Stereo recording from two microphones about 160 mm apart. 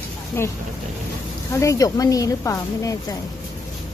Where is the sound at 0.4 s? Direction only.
15° left (ahead or behind).